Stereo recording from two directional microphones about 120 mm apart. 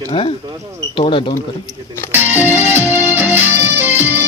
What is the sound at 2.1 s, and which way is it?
Music, 15° right (ahead or behind).